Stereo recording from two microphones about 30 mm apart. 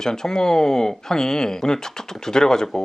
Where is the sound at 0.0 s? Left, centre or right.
Centre.